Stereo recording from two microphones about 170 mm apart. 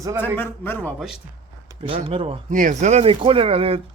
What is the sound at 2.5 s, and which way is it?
Speech, 50° right (ahead or behind).